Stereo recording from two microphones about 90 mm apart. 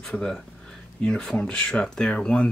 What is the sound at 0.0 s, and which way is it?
Speech, 5° left (ahead or behind).